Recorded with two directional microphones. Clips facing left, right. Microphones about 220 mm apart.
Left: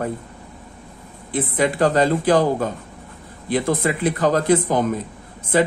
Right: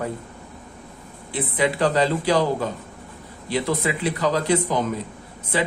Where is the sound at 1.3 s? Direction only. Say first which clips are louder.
Left 3 dB; 45° left (ahead or behind).